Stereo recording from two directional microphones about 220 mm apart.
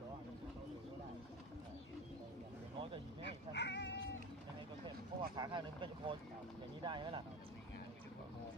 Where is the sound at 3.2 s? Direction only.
50° left (ahead or behind).